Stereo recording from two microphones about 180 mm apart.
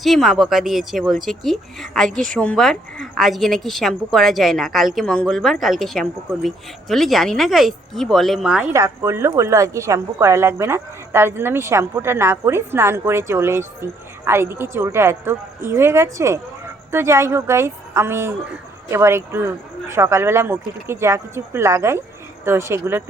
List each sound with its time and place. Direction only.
0.0 s a woman's voice: centre (ahead or behind)
8.7 s a woman's voice: 15° right (ahead or behind)